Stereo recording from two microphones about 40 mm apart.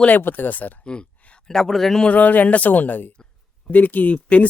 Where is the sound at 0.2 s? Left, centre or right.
Left.